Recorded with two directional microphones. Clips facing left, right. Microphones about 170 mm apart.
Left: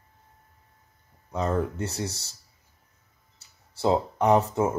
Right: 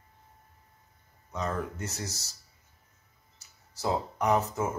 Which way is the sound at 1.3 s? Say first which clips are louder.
Left 6 dB; 30° left (ahead or behind).